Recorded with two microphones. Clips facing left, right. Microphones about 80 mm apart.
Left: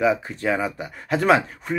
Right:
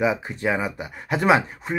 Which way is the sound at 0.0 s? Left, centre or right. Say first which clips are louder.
Left 1 dB; centre.